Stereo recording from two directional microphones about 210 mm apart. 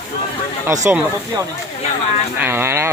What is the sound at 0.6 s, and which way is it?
Speech, 15° right (ahead or behind).